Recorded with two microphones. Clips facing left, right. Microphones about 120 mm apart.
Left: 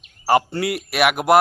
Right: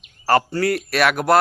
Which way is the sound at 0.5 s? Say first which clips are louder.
Right 2 dB; 15° left (ahead or behind).